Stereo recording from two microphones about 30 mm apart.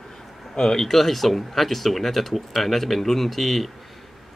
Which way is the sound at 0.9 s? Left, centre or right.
Centre.